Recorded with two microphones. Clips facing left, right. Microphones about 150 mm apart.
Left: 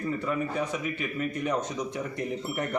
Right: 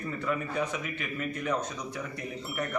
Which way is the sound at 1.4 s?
20° left (ahead or behind).